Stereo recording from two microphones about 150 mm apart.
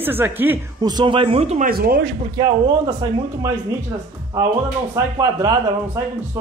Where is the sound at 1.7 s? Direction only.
80° right.